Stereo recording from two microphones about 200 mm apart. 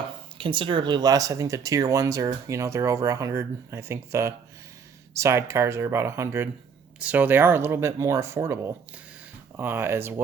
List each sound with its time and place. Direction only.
0.3 s speech: 25° right (ahead or behind)